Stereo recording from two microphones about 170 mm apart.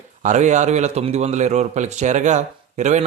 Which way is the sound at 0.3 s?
45° right (ahead or behind).